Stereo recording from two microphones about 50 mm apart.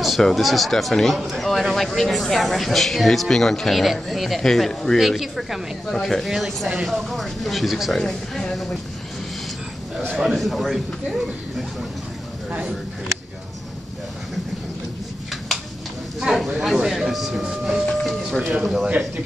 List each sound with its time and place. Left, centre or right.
0.0 s speech: centre
4.9 s speech: centre
5.9 s speech: centre
6.2 s speech: centre
10.1 s speech: centre
12.4 s speech: right
16.2 s speech: centre